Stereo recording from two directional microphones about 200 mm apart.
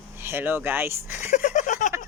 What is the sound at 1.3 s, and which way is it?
Speech, 40° left (ahead or behind).